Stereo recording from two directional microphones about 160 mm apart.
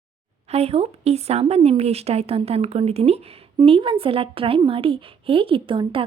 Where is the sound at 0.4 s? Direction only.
40° right (ahead or behind).